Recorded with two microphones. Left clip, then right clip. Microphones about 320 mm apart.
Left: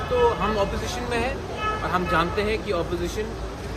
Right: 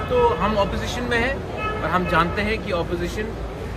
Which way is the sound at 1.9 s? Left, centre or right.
Centre.